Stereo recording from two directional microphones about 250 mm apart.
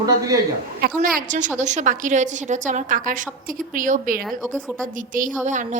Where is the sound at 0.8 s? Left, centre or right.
Right.